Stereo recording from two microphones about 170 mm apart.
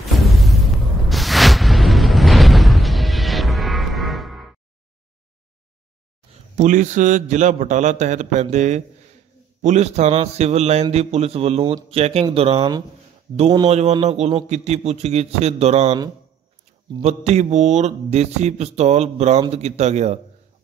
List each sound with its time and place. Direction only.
0.2 s a sound: centre (ahead or behind)
6.5 s a man's voice: 45° right (ahead or behind)
17.0 s speech: 40° right (ahead or behind)